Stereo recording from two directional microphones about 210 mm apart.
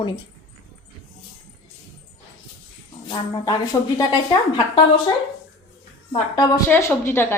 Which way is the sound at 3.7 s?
15° left (ahead or behind).